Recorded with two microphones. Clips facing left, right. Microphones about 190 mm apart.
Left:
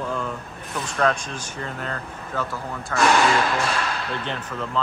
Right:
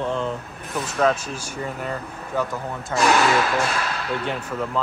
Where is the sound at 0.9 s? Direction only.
5° right (ahead or behind).